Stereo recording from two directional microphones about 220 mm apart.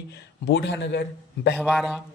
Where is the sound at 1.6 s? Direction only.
Centre (ahead or behind).